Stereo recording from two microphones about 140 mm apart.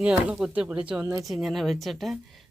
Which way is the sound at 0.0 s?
5° right (ahead or behind).